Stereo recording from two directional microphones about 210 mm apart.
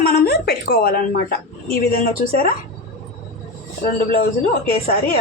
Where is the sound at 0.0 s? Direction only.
50° left (ahead or behind).